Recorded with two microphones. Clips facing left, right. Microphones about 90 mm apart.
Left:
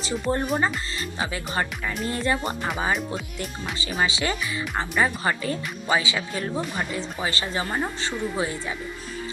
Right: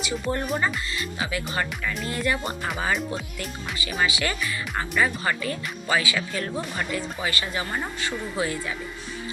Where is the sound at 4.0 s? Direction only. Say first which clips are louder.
Left 1 dB; 25° left (ahead or behind).